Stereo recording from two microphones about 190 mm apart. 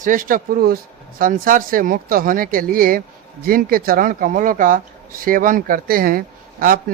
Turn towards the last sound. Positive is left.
turn(degrees=-45)  # may be behind; listen again after turning